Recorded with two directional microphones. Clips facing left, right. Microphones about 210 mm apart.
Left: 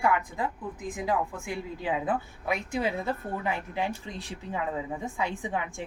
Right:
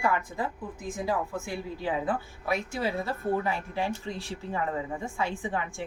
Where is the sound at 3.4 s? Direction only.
20° left (ahead or behind).